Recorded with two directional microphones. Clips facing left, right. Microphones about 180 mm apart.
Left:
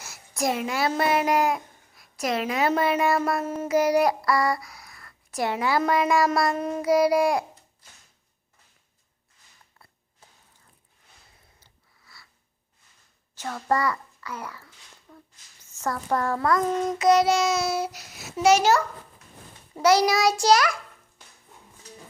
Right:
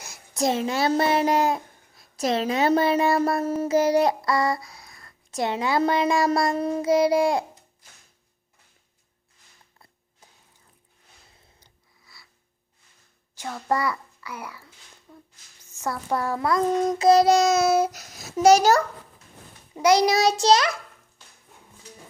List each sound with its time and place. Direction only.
0.0 s a child's voice: 20° right (ahead or behind)
9.7 s a sound: 20° right (ahead or behind)
11.6 s sniff: 15° right (ahead or behind)
13.3 s a child's voice: 10° right (ahead or behind)
15.1 s a sound: 10° right (ahead or behind)
15.8 s a child's voice: 10° right (ahead or behind)
16.6 s child singing: 35° right (ahead or behind)
19.7 s a child's voice: 15° right (ahead or behind)